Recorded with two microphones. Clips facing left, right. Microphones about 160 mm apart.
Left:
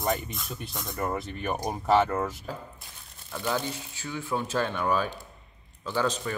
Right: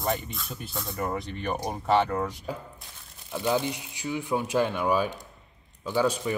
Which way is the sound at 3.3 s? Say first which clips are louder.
Right 4 dB; 15° right (ahead or behind).